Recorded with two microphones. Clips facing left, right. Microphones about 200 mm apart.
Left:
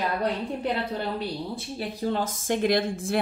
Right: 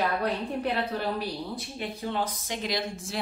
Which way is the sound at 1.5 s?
35° left (ahead or behind).